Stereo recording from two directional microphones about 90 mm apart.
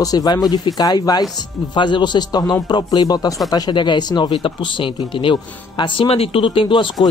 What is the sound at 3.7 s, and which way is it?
Speech, 60° left (ahead or behind).